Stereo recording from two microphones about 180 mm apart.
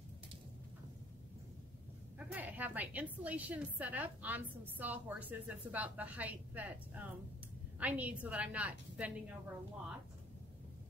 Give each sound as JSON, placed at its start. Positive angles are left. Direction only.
{"t": 2.1, "sound": "a woman's voice", "side_deg": -10}